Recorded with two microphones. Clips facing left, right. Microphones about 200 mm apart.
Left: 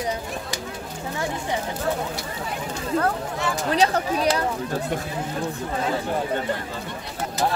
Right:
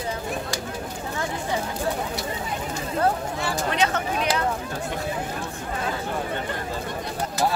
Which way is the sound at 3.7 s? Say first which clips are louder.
Left 5 dB; 35° left (ahead or behind).